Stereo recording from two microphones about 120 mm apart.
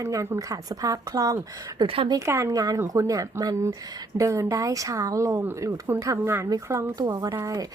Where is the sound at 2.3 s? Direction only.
30° right (ahead or behind).